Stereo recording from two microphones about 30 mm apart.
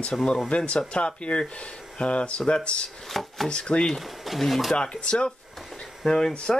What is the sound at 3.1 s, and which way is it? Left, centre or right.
Speech, centre.